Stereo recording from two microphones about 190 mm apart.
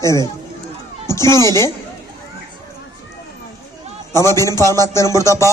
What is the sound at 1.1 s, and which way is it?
Speech, 15° left (ahead or behind).